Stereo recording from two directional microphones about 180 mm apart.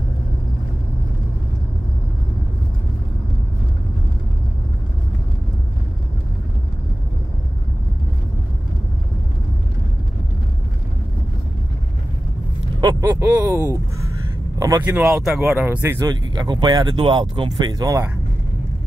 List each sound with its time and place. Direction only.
12.8 s speech: 20° right (ahead or behind); by 15.5 s centre (ahead or behind)
15.5 s speech: 10° right (ahead or behind)